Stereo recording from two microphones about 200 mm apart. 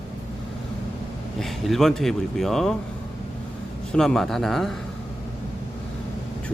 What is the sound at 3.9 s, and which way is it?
Speech, centre (ahead or behind).